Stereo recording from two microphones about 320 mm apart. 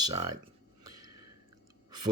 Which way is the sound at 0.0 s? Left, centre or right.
Centre.